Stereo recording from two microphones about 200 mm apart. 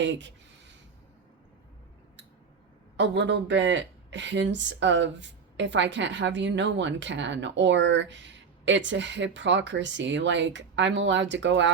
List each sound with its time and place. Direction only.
0.0 s speech: 65° right (ahead or behind)
3.0 s speech: 60° right (ahead or behind)